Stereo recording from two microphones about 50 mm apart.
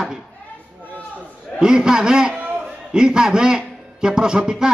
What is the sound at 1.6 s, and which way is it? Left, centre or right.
A man's voice, centre.